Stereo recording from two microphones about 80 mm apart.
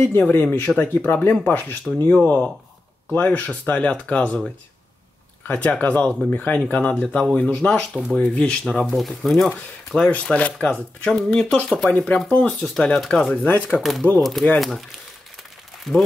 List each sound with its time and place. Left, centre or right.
0.0 s speech: left
5.5 s speech: centre
8.9 s speech: centre
9.5 s speech: centre
11.1 s speech: centre
12.7 s speech: centre
13.7 s speech: centre